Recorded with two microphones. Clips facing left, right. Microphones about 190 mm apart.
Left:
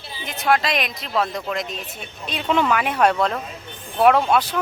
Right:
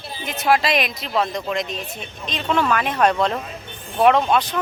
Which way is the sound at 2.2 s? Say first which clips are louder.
Even; 15° left (ahead or behind).